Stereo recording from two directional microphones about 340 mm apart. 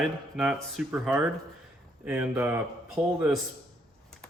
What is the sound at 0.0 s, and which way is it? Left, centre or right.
A man's voice, centre.